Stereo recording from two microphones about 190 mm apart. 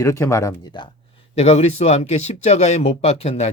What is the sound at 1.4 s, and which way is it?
Speech, 35° left (ahead or behind).